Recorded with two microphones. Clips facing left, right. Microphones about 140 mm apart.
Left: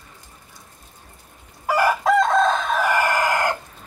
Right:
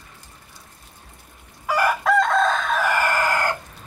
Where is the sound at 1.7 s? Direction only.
25° left (ahead or behind).